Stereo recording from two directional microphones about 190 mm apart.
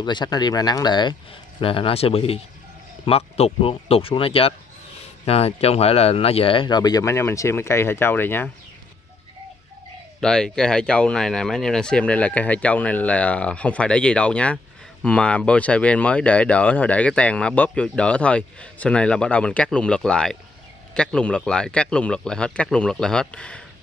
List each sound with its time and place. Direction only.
0.0 s speech: 20° left (ahead or behind)
10.2 s speech: 5° left (ahead or behind)